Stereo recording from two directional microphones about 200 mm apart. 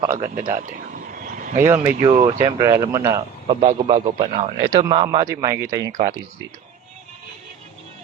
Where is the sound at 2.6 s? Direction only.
15° right (ahead or behind).